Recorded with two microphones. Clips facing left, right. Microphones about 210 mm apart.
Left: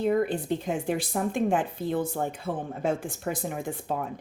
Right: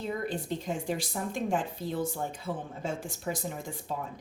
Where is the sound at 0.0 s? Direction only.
60° left (ahead or behind).